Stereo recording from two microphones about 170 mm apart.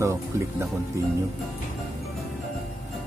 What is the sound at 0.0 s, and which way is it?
Speech, 15° right (ahead or behind).